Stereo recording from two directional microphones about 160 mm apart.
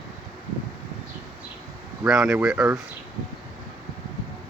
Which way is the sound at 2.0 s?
5° right (ahead or behind).